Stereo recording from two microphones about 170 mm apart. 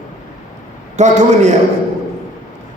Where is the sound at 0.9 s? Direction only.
45° right (ahead or behind).